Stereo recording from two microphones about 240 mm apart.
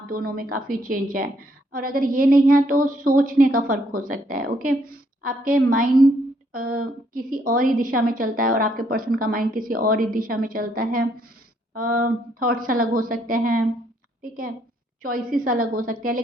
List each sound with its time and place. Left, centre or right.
0.1 s a woman's voice: right